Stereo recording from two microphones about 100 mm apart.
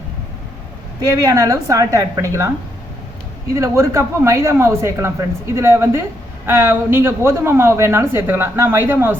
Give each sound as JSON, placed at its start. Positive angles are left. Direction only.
{"t": 1.0, "sound": "a woman's voice", "side_deg": -35}
{"t": 3.5, "sound": "speech", "side_deg": -30}